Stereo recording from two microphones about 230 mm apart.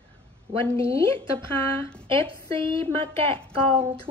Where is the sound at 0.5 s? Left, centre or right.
Right.